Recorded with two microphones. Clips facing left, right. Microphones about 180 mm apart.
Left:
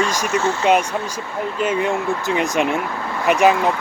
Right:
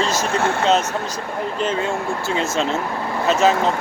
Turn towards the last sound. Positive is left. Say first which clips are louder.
# left 1 dB
turn(degrees=15)  # may be behind; listen again after turning